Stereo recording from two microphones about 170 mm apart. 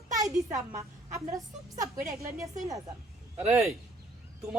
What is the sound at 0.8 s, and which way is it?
A woman's voice, 20° right (ahead or behind).